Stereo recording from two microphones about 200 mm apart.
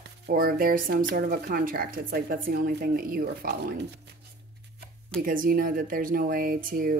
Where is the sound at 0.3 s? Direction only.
45° right (ahead or behind).